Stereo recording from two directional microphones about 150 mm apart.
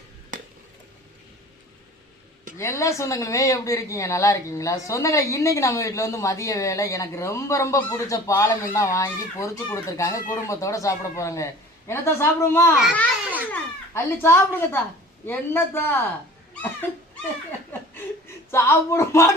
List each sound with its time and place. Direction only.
2.6 s a woman's voice: 20° left (ahead or behind)
12.7 s a child's voice: centre (ahead or behind)
13.5 s a man's voice: 15° left (ahead or behind)
17.7 s a sound: 15° left (ahead or behind)
18.5 s a man's voice: 15° left (ahead or behind)